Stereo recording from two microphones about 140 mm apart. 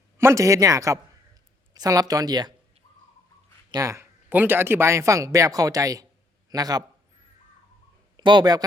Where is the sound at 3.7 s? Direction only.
25° right (ahead or behind).